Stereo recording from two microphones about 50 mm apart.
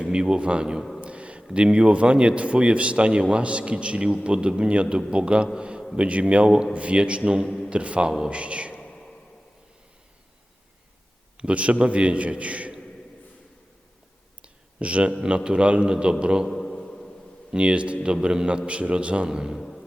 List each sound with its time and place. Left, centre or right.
0.0 s speech: centre
0.8 s speech: centre
1.0 s a sound: right
1.5 s a man's voice: centre
5.5 s a sound: centre
6.0 s a man's voice: right
7.4 s a man's voice: centre
7.7 s a man's voice: right
11.3 s a man's voice: right
14.4 s clicking: right
15.4 s a man's voice: right
16.5 s a sound: centre
17.5 s a man's voice: right
19.5 s music: centre